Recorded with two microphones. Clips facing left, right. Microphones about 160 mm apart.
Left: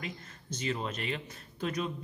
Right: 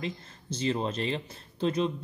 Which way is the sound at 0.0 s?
30° right (ahead or behind).